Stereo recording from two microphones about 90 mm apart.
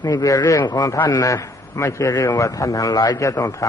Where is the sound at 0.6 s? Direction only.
55° left (ahead or behind).